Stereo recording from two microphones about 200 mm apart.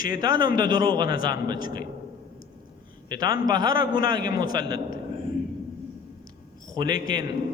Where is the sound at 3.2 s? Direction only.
45° left (ahead or behind).